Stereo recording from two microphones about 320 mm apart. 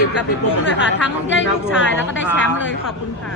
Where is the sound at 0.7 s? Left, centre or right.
Left.